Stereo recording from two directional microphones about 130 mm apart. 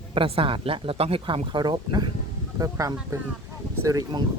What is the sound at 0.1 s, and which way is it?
A woman's voice, 45° right (ahead or behind).